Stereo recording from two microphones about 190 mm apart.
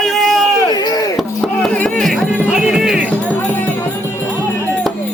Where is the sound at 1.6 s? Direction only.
5° left (ahead or behind).